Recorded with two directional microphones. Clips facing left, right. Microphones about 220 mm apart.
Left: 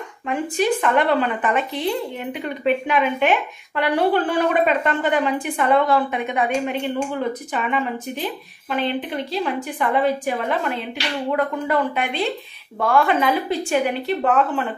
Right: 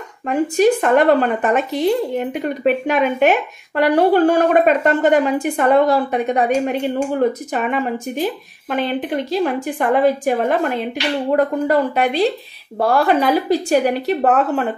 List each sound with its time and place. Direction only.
0.3 s a woman's voice: 45° right (ahead or behind)